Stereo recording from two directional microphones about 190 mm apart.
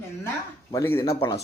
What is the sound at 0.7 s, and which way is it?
Speech, 10° left (ahead or behind).